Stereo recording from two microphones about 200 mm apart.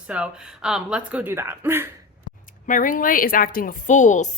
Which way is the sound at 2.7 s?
40° left (ahead or behind).